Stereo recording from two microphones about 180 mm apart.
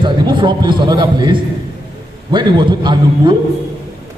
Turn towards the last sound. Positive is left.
turn(degrees=-25)  # may be behind; listen again after turning